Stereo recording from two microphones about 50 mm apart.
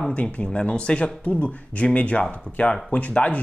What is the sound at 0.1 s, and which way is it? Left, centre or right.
Speech, left.